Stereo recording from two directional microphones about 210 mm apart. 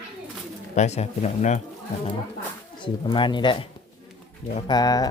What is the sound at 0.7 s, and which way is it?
Speech, 30° left (ahead or behind).